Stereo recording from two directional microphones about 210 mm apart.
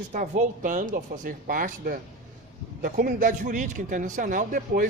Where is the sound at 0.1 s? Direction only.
35° right (ahead or behind).